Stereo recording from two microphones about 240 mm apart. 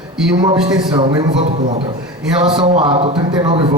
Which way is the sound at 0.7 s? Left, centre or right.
Centre.